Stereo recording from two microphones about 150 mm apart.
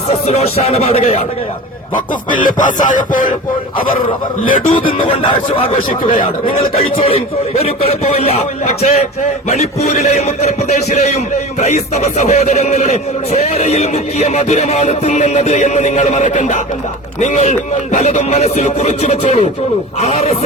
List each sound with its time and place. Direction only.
0.1 s speech: 45° left (ahead or behind)
2.3 s music: 60° left (ahead or behind)
4.4 s music: 65° left (ahead or behind)
4.9 s speech: 35° left (ahead or behind)
7.6 s speech: 45° left (ahead or behind)